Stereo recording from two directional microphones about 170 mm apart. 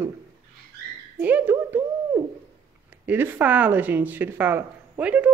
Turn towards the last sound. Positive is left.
turn(degrees=-10)  # may be behind; listen again after turning